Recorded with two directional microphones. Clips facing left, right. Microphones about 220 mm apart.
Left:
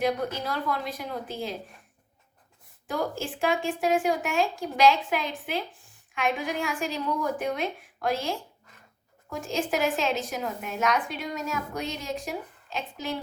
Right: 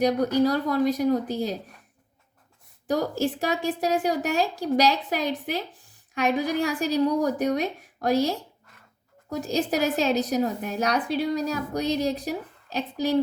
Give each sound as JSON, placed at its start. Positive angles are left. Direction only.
{"t": 0.0, "sound": "a woman's voice", "side_deg": -40}
{"t": 2.8, "sound": "a woman's voice", "side_deg": -40}